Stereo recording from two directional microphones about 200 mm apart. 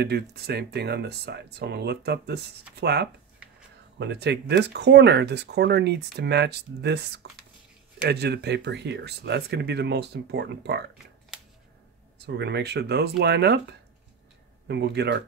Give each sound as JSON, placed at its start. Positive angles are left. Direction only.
{"t": 0.0, "sound": "speech", "side_deg": -55}
{"t": 12.4, "sound": "speech", "side_deg": -55}
{"t": 14.7, "sound": "speech", "side_deg": -55}